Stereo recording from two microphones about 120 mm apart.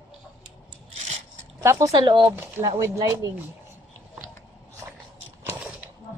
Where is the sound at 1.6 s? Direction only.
25° right (ahead or behind).